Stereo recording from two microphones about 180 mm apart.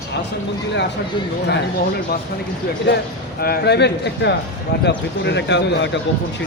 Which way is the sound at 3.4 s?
65° left (ahead or behind).